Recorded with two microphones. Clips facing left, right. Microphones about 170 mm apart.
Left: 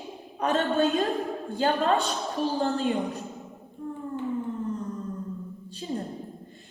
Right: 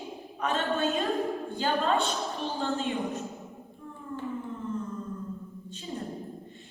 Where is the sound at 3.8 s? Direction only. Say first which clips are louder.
Left 10 dB; 45° left (ahead or behind).